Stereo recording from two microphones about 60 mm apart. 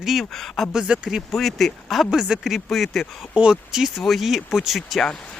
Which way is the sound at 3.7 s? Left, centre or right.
Centre.